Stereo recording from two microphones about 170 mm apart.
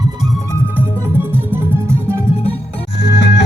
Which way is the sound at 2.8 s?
80° left.